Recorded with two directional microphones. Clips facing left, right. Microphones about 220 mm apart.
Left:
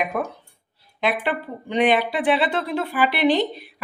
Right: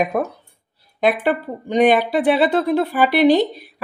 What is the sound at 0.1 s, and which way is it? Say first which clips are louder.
A woman's voice: right 5 dB; 35° right (ahead or behind).